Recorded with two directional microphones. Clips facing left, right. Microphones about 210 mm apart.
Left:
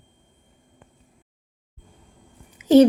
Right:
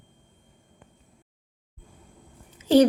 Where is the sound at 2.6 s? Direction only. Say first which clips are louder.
Left 4 dB; 20° left (ahead or behind).